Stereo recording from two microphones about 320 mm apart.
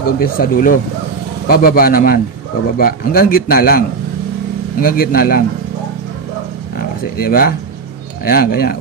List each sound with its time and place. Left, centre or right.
0.2 s speech: left
4.8 s speech: left
7.2 s speech: left